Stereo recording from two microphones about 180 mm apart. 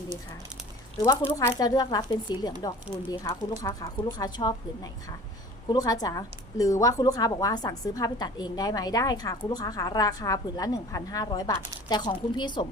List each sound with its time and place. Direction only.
0.9 s a woman's voice: 15° left (ahead or behind)